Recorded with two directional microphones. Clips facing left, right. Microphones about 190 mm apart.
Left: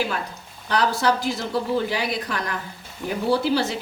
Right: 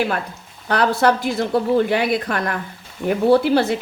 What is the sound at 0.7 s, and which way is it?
A woman's voice, 55° right (ahead or behind).